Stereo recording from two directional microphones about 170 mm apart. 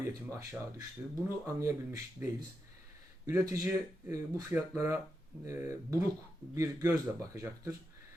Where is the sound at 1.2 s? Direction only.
20° right (ahead or behind).